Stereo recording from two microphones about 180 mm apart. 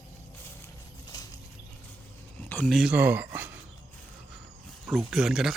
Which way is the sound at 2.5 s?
5° left (ahead or behind).